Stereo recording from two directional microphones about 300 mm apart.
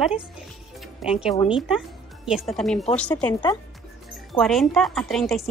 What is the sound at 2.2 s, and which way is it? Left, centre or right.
Speech, centre.